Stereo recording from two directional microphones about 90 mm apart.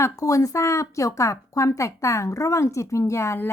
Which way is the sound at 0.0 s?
40° left (ahead or behind).